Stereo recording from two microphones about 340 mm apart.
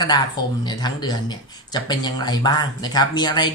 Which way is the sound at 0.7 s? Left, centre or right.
Centre.